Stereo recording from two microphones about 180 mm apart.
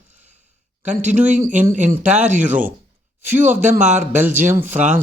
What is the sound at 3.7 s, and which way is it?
Speech, 40° right (ahead or behind).